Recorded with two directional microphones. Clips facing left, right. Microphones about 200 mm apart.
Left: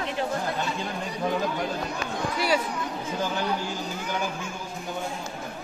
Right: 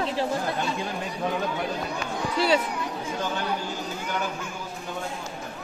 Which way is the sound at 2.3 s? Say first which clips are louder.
Right 3 dB; 25° right (ahead or behind).